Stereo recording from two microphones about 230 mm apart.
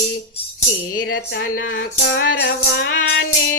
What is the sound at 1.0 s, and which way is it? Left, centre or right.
Speech, left.